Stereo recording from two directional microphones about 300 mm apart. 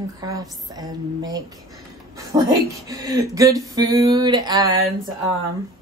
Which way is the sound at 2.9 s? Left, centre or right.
Centre.